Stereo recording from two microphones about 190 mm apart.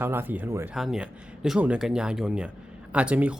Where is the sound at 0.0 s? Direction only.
10° right (ahead or behind).